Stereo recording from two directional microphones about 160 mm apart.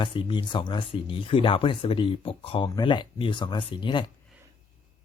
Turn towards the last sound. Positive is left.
turn(degrees=30)  # may be behind; listen again after turning